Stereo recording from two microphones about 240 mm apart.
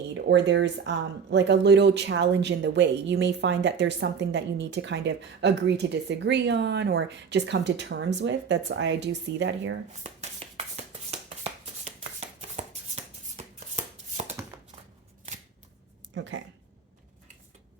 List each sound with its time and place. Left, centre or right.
0.1 s speech: right
10.0 s a sound: right
12.2 s chopping: right
12.6 s shuffle: right
16.1 s speech: right